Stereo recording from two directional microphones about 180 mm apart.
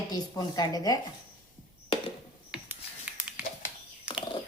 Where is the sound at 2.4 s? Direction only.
5° right (ahead or behind).